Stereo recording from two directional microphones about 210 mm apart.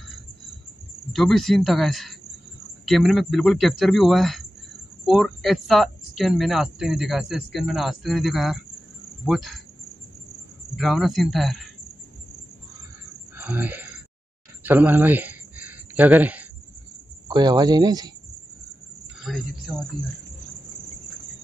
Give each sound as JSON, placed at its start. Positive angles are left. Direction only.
{"t": 1.1, "sound": "speech", "side_deg": 0}
{"t": 10.8, "sound": "speech", "side_deg": 0}
{"t": 13.3, "sound": "a sound", "side_deg": -10}
{"t": 14.6, "sound": "speech", "side_deg": -10}
{"t": 17.3, "sound": "speech", "side_deg": -20}
{"t": 19.2, "sound": "speech", "side_deg": 0}